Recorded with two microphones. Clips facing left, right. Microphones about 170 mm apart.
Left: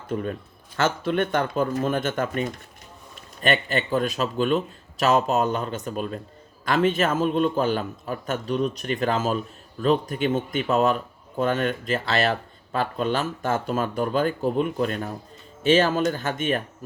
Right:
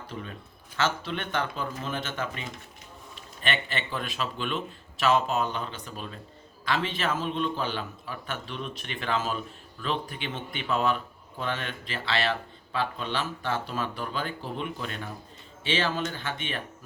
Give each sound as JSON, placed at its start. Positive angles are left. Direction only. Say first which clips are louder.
{"t": 0.1, "sound": "speech", "louder": "left 14 dB", "side_deg": 45}